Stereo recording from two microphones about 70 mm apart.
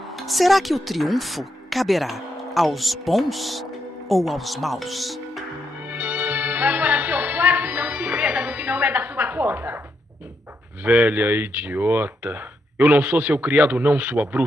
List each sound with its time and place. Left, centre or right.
0.3 s speech: centre
5.9 s music: right
10.8 s speech: centre